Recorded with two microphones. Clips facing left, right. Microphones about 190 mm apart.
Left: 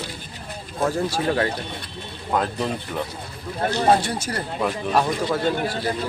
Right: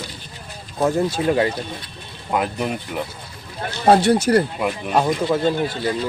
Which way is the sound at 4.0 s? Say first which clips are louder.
Right 12 dB; 65° right (ahead or behind).